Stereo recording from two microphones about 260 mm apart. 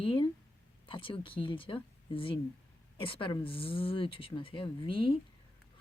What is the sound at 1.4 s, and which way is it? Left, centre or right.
Speech, centre.